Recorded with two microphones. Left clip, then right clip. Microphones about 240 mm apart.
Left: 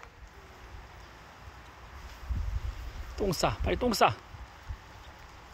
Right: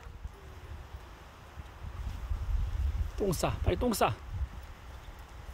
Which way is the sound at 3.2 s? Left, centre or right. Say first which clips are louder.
Left 3 dB; centre.